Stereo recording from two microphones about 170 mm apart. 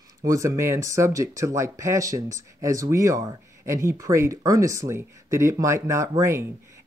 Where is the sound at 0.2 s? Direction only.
15° right (ahead or behind).